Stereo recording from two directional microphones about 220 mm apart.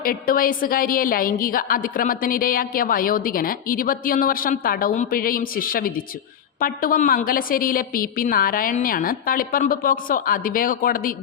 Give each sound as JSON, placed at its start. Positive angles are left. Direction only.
{"t": 0.0, "sound": "a woman's voice", "side_deg": 40}